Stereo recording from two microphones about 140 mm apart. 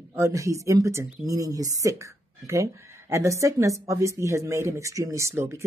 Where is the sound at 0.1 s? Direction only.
20° right (ahead or behind).